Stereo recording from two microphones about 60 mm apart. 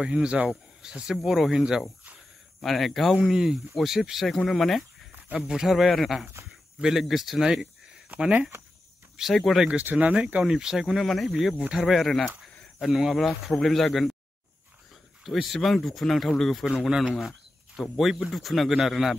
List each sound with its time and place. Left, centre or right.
0.0 s speech: centre
2.6 s speech: centre
3.2 s speech: centre
5.3 s speech: centre
8.4 s speech: right
9.3 s speech: centre
9.8 s speech: right
10.4 s speech: centre
15.2 s speech: centre
16.6 s speech: centre